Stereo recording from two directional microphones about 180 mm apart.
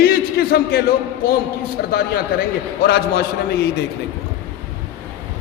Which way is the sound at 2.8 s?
60° left (ahead or behind).